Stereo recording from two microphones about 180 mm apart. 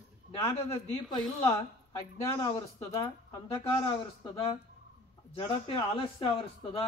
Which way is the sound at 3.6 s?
30° left (ahead or behind).